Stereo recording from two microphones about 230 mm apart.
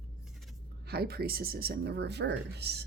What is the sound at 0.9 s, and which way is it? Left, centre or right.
Speech, right.